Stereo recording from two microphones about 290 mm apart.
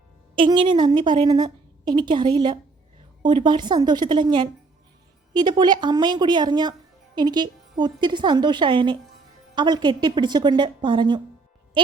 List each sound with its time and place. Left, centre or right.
0.3 s a woman's voice: centre